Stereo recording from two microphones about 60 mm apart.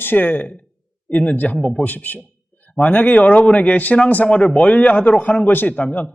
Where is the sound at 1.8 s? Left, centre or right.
Left.